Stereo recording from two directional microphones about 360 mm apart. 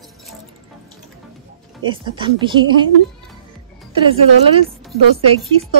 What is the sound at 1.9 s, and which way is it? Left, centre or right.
Speech, centre.